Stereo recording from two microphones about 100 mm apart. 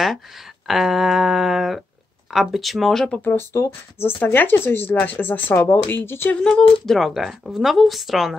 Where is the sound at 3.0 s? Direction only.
15° left (ahead or behind).